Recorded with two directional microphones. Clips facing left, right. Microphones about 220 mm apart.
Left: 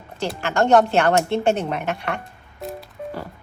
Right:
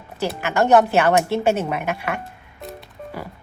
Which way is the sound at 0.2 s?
10° right (ahead or behind).